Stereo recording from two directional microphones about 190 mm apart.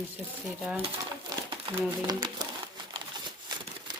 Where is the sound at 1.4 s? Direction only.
25° right (ahead or behind).